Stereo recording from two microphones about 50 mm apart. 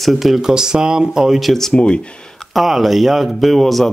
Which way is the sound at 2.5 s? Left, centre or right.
Centre.